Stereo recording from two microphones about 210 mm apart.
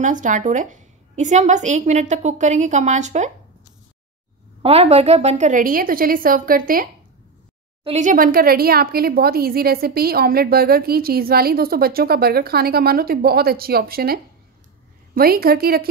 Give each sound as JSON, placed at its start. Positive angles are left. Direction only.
{"t": 0.0, "sound": "a woman's voice", "side_deg": -35}
{"t": 4.6, "sound": "a woman's voice", "side_deg": -30}